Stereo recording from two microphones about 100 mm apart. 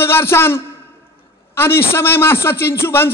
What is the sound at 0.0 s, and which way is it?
A man's voice, 25° left (ahead or behind).